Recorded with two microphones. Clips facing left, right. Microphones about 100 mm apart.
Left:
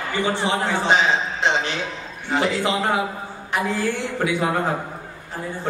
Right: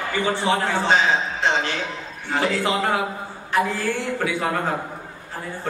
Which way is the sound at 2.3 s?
20° left (ahead or behind).